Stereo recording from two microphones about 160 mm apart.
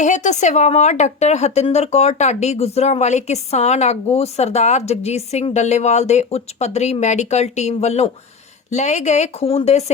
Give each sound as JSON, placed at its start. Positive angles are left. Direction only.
{"t": 0.0, "sound": "a woman's voice", "side_deg": 50}